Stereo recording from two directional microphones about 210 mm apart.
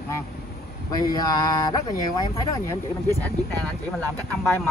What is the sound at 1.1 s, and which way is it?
Speech, 20° left (ahead or behind).